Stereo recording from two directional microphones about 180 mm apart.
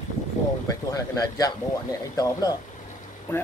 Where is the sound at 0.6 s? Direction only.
20° left (ahead or behind).